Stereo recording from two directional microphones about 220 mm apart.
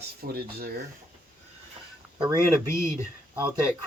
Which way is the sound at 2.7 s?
10° left (ahead or behind).